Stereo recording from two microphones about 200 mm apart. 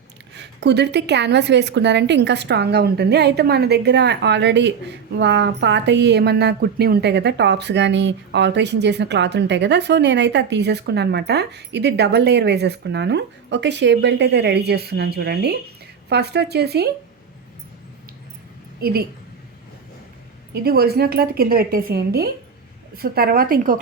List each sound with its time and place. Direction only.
0.3 s speech: 55° right (ahead or behind)
18.8 s a woman's voice: 50° right (ahead or behind)
20.5 s a woman's voice: 50° right (ahead or behind)